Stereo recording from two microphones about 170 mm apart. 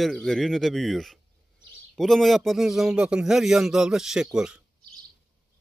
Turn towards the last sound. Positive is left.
turn(degrees=-5)  # may be behind; listen again after turning